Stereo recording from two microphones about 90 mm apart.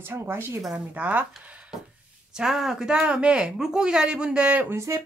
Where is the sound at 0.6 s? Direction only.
10° right (ahead or behind).